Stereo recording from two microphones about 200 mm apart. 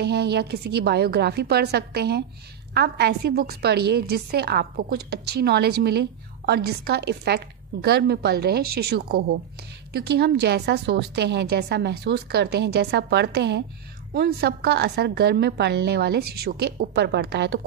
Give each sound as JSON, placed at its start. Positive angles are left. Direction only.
{"t": 0.0, "sound": "a woman's voice", "side_deg": -55}